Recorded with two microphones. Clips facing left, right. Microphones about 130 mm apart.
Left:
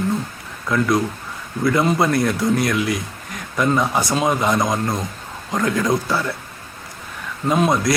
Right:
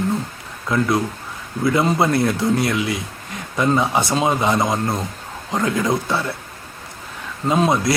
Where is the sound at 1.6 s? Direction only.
25° right (ahead or behind).